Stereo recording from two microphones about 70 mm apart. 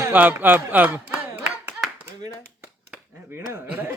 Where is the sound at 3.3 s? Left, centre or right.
Right.